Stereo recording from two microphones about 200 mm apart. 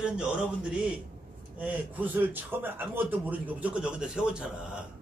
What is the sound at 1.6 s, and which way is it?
Speech, 10° right (ahead or behind).